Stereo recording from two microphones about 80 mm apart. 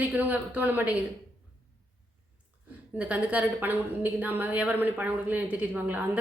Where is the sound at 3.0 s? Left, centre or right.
Centre.